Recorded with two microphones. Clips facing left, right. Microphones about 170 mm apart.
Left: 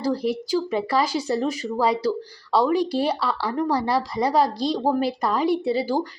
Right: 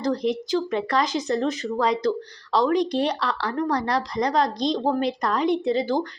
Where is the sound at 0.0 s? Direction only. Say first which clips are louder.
Even; 5° left (ahead or behind).